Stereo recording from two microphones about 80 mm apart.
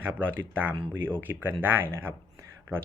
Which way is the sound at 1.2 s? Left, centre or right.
Right.